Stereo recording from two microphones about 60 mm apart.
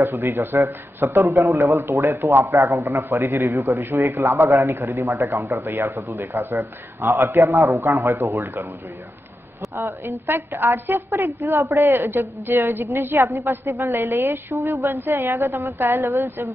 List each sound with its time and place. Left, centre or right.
0.0 s a woman's voice: right
9.8 s speech: right
10.2 s a woman's voice: right
12.2 s a woman's voice: right
13.2 s a woman's voice: right
14.1 s a woman's voice: right
14.5 s a woman's voice: right
15.3 s a woman's voice: right